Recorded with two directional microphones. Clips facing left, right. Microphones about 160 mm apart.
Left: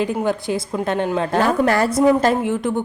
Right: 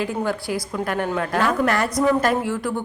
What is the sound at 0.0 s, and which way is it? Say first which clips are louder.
A woman's voice: left 4 dB; 20° left (ahead or behind).